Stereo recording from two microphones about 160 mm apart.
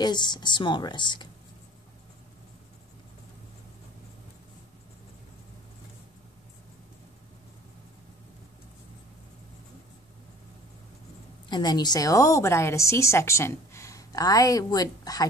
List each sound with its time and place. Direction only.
0.0 s a woman's voice: 30° left (ahead or behind)
11.4 s a woman's voice: 25° left (ahead or behind)